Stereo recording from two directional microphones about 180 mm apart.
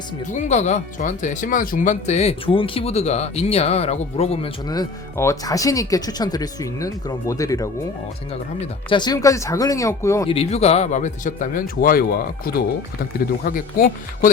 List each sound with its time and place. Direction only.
0.3 s speech: 40° left (ahead or behind)
4.7 s speech: 20° left (ahead or behind)
8.9 s speech: 25° left (ahead or behind)
10.2 s speech: 35° left (ahead or behind); by 14.3 s 55° left (ahead or behind)